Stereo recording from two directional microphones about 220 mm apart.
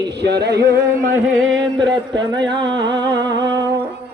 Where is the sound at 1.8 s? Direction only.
20° right (ahead or behind).